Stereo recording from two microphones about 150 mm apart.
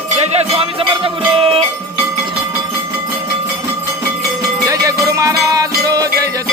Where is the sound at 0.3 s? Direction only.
40° right (ahead or behind).